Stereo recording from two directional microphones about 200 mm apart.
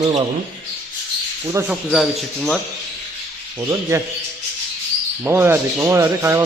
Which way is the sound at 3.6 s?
15° right (ahead or behind).